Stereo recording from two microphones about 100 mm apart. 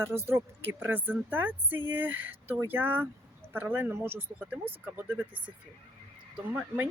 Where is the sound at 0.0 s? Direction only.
25° right (ahead or behind).